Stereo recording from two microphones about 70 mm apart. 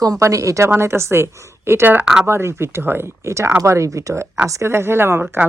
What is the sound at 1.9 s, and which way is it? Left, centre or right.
Speech, centre.